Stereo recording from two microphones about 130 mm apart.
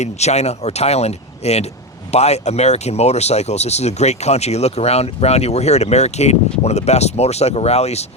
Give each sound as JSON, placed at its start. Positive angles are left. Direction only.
{"t": 0.0, "sound": "speech", "side_deg": 60}